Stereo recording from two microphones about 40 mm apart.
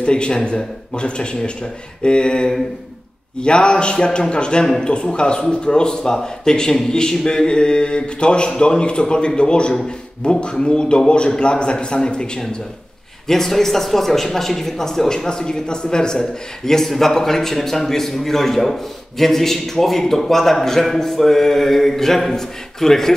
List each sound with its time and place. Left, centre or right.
0.0 s speech: left
13.3 s speech: centre